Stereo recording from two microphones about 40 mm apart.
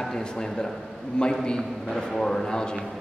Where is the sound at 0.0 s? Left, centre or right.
Centre.